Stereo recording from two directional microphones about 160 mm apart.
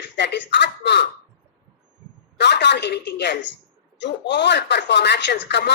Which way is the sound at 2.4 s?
90° left.